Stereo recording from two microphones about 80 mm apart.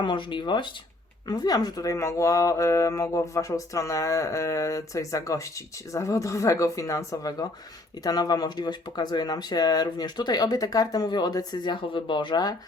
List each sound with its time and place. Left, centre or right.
0.0 s speech: left
1.3 s speech: left